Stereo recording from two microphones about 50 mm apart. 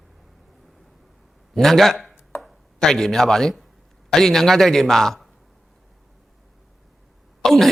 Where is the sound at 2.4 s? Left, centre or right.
Centre.